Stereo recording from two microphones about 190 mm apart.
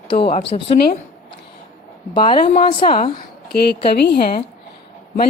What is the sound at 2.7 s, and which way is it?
Speech, 30° left (ahead or behind).